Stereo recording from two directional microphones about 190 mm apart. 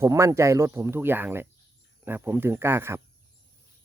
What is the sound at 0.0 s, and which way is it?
Speech, 15° right (ahead or behind).